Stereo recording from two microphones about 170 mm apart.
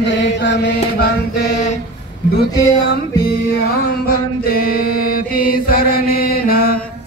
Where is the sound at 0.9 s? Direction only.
75° left (ahead or behind).